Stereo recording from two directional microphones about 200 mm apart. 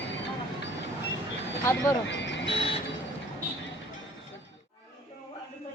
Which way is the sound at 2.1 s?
65° left (ahead or behind).